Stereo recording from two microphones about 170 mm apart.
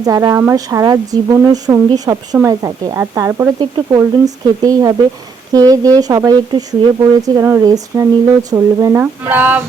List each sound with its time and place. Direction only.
0.0 s speech: 20° right (ahead or behind)